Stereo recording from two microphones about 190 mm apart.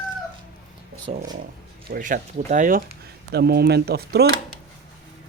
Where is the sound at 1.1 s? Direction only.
30° right (ahead or behind).